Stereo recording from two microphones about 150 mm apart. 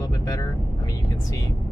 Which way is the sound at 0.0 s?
25° left (ahead or behind).